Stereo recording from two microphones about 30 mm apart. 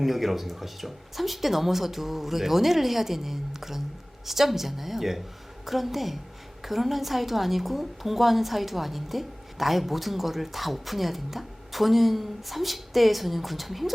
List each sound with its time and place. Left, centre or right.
0.0 s a woman's voice: centre